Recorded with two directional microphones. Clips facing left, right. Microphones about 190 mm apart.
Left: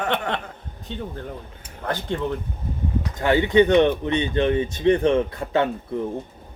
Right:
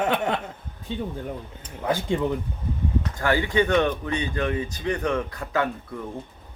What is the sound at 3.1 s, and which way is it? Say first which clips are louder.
Speech: left 6 dB; 20° left (ahead or behind).